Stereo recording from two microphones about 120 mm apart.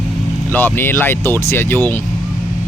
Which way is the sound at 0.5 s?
15° left (ahead or behind).